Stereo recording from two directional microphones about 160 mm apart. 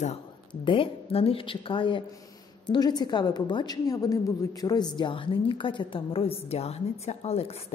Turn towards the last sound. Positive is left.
turn(degrees=40)  # may be behind; listen again after turning